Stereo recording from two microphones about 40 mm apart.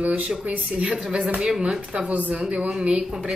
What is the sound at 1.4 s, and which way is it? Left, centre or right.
Speech, centre.